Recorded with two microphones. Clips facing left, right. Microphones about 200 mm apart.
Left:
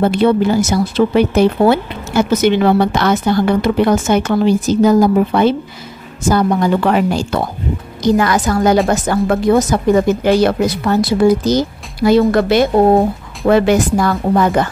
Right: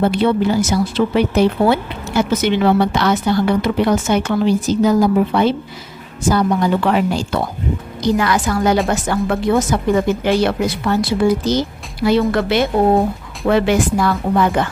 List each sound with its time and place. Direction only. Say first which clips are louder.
0.1 s speech: left 3 dB; 45° left (ahead or behind)